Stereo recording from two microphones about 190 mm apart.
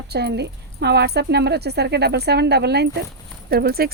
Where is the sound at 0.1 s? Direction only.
60° right (ahead or behind).